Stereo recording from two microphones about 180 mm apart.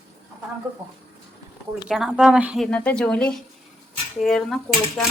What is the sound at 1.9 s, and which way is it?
A woman's voice, 5° right (ahead or behind).